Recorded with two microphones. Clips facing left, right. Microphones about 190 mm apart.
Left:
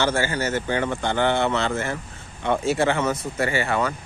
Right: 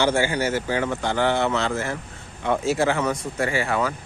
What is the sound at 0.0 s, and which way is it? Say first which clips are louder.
Speech: right 2 dB; 15° right (ahead or behind).